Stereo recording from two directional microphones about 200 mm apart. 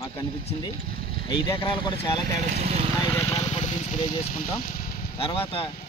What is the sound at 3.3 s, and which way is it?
Vehicle, 35° left (ahead or behind).